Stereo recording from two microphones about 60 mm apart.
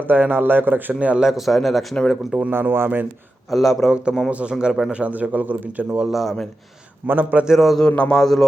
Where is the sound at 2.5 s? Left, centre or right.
Right.